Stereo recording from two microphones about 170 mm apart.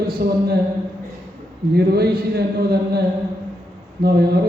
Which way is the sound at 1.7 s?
70° right (ahead or behind).